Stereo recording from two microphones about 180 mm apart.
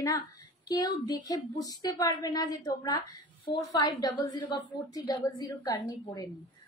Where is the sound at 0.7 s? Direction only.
20° left (ahead or behind).